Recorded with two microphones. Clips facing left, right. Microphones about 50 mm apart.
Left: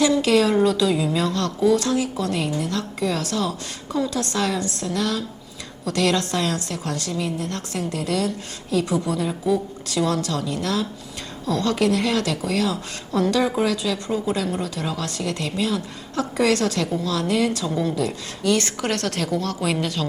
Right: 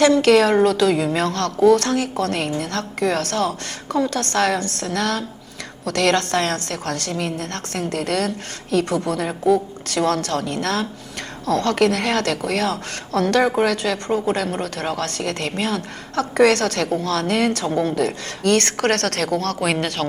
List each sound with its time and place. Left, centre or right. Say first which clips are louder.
0.0 s a woman's voice: right 4 dB; right